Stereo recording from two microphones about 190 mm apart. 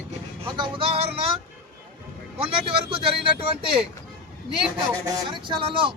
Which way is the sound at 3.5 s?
30° right (ahead or behind).